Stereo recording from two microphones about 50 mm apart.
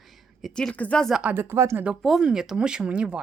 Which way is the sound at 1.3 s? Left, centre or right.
Right.